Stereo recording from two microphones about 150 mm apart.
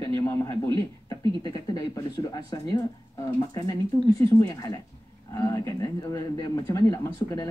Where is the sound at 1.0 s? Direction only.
30° left (ahead or behind).